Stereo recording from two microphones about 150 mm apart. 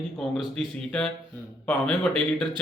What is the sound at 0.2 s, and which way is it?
Speech, centre (ahead or behind).